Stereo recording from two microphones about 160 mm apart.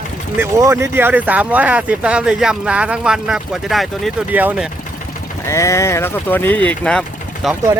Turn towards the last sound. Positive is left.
turn(degrees=0)  # may be behind; listen again after turning